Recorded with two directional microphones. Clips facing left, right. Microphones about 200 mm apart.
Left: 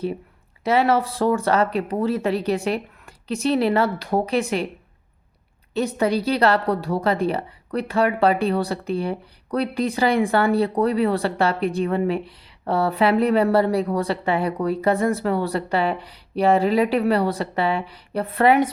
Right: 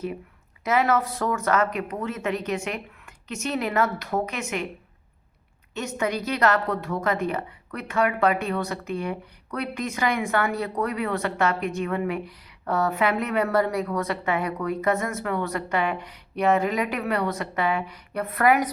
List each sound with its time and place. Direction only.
0.6 s a woman's voice: 30° left (ahead or behind)
5.7 s a woman's voice: 35° left (ahead or behind)